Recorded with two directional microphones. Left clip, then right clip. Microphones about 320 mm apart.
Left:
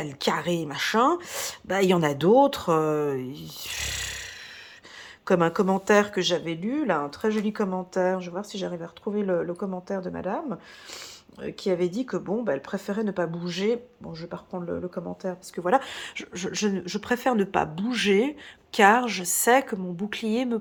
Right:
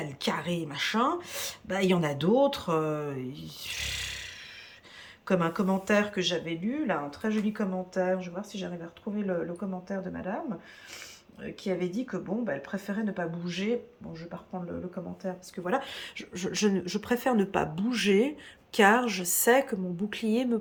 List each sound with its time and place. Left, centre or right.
0.0 s speech: centre
11.4 s speech: centre